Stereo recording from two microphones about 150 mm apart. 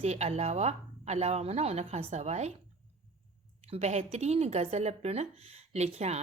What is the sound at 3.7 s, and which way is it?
Speech, 45° right (ahead or behind).